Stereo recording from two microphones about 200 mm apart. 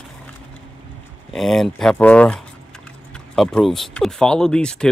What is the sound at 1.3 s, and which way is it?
Speech, centre (ahead or behind).